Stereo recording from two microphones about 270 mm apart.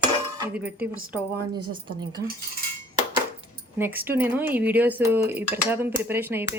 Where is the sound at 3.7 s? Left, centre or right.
Centre.